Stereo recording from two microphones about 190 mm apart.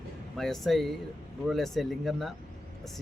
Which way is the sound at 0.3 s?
Centre (ahead or behind).